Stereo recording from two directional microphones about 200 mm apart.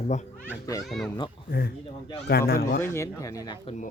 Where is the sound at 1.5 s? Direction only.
50° left (ahead or behind).